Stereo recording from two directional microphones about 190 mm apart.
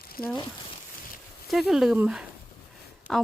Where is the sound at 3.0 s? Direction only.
40° left (ahead or behind).